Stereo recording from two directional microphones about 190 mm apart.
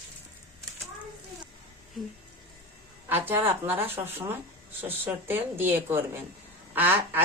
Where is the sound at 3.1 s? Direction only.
10° right (ahead or behind).